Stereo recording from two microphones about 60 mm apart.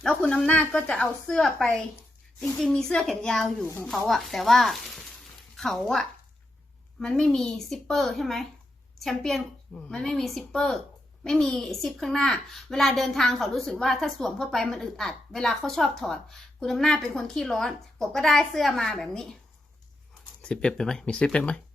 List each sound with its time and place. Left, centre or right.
0.1 s a woman's voice: left; by 6.0 s centre
7.0 s a woman's voice: centre
20.4 s speech: centre